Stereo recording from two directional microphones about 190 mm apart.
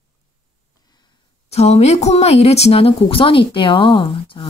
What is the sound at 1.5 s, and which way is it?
Speech, 35° left (ahead or behind).